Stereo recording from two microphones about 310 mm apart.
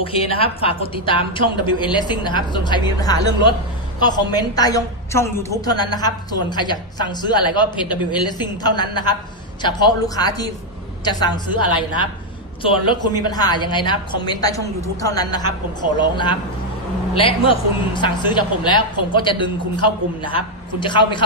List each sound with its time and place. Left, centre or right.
0.0 s a woman's voice: centre